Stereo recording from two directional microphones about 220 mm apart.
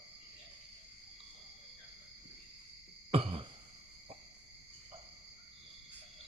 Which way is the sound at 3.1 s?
25° right (ahead or behind).